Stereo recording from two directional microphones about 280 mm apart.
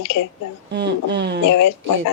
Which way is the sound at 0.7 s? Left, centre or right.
Right.